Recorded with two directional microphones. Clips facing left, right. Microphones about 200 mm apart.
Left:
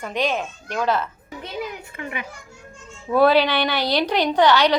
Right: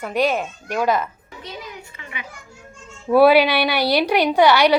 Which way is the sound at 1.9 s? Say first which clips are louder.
Left 6 dB; 50° left (ahead or behind).